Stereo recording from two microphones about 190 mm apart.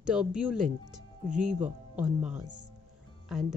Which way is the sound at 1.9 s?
5° right (ahead or behind).